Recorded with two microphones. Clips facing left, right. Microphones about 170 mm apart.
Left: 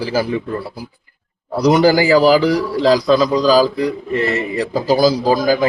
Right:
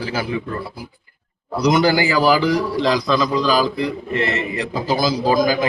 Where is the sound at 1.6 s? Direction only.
35° left (ahead or behind).